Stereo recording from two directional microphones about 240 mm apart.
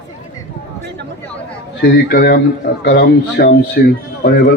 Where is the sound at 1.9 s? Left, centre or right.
Left.